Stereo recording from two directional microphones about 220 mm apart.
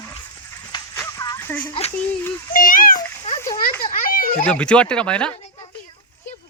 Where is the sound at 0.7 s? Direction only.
15° left (ahead or behind).